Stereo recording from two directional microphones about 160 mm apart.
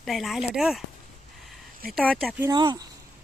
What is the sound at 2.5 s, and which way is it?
Speech, 25° right (ahead or behind).